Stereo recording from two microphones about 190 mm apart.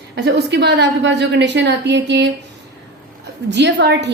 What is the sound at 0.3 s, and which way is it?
A woman's voice, 65° right (ahead or behind).